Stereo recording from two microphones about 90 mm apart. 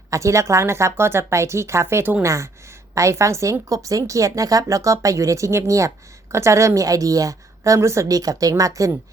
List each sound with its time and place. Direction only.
0.1 s a woman's voice: 35° right (ahead or behind)